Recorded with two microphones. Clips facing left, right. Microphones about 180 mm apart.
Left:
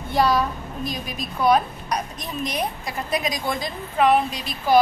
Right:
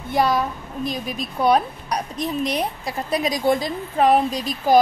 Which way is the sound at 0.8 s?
30° right (ahead or behind).